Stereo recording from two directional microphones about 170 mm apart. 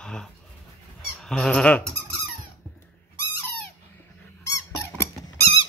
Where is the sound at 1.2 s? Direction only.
5° left (ahead or behind).